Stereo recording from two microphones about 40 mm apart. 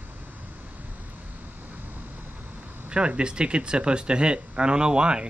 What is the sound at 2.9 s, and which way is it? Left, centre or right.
Speech, right.